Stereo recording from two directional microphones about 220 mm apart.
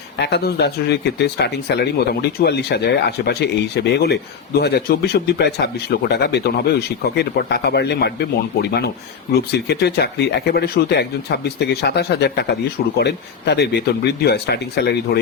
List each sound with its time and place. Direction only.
0.2 s speech: 50° left (ahead or behind)
9.6 s speech: 50° left (ahead or behind)